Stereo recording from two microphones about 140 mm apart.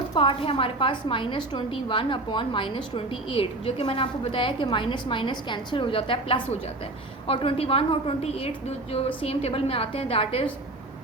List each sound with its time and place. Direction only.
0.1 s a woman's voice: 35° left (ahead or behind)